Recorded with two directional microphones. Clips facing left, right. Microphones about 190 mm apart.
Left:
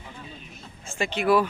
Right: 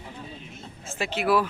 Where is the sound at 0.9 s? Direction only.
5° right (ahead or behind).